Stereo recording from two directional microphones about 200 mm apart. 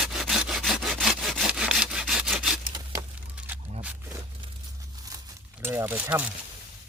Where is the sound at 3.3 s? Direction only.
5° right (ahead or behind).